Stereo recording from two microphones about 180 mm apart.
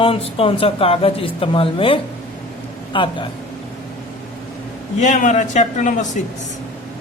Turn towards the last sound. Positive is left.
turn(degrees=45)  # may be behind; listen again after turning